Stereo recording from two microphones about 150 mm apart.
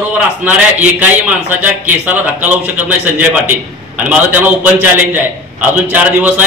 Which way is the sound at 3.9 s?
10° right (ahead or behind).